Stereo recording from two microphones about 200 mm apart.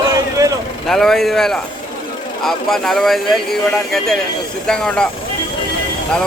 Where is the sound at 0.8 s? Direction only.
Centre (ahead or behind).